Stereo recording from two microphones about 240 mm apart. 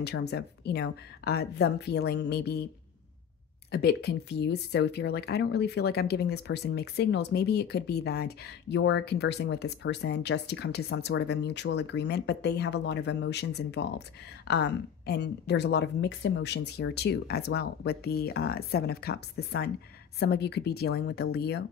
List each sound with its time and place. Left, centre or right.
0.0 s speech: left
3.7 s speech: left